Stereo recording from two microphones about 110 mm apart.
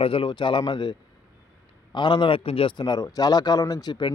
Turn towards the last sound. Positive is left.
turn(degrees=40)  # may be behind; listen again after turning